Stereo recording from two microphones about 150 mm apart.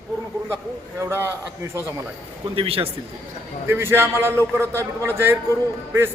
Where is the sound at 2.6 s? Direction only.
40° right (ahead or behind).